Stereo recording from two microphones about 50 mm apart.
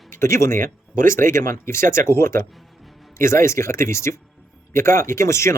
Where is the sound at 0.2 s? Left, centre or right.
Left.